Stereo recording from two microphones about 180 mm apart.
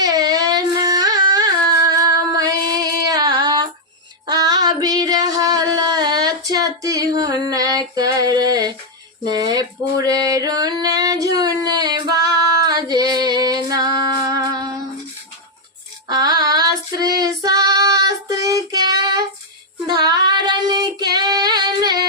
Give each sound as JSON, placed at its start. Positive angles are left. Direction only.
{"t": 0.0, "sound": "a sound", "side_deg": -20}
{"t": 4.3, "sound": "female singing", "side_deg": -20}
{"t": 16.0, "sound": "female singing", "side_deg": -20}
{"t": 19.9, "sound": "child singing", "side_deg": -20}